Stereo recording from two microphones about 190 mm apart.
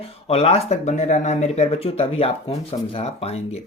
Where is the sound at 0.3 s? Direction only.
35° left (ahead or behind).